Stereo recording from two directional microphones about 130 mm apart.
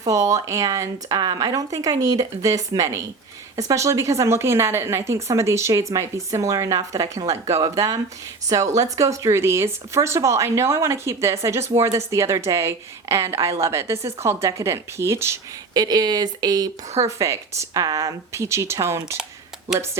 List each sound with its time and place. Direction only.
0.0 s speech: 25° right (ahead or behind)